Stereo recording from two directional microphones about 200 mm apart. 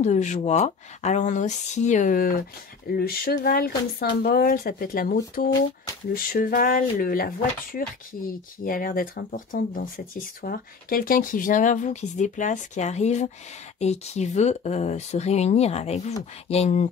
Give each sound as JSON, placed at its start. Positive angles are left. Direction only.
{"t": 0.0, "sound": "speech", "side_deg": 35}